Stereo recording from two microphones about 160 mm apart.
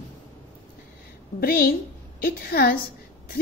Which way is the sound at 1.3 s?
65° left (ahead or behind).